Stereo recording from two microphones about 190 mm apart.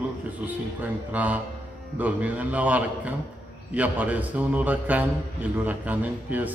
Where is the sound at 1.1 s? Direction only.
10° right (ahead or behind).